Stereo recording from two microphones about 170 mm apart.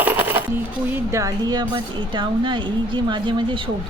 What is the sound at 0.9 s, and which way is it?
Speech, 15° right (ahead or behind).